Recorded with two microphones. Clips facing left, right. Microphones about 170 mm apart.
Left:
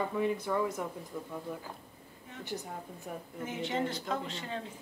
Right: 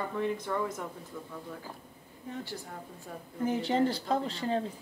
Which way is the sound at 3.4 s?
35° right (ahead or behind).